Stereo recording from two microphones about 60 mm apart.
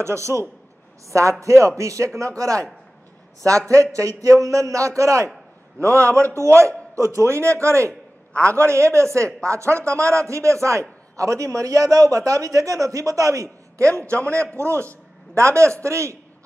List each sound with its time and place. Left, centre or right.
0.0 s a man's voice: right
8.3 s a man's voice: centre
8.5 s a man's voice: right